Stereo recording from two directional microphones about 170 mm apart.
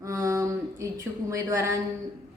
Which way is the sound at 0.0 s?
20° right (ahead or behind).